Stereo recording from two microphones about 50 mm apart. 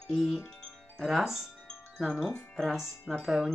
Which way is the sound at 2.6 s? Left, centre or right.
Centre.